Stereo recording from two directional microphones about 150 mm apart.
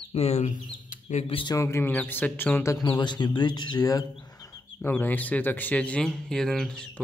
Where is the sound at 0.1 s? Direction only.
45° left (ahead or behind).